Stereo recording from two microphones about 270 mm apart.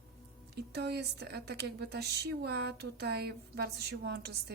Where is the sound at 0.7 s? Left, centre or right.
Right.